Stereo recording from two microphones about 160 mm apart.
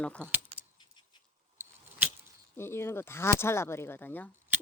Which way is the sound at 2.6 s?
15° left (ahead or behind).